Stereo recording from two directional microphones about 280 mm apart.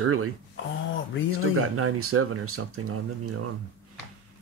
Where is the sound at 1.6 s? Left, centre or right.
Right.